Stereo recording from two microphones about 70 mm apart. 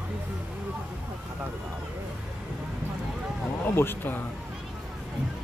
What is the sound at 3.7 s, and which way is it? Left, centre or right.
Speech, left.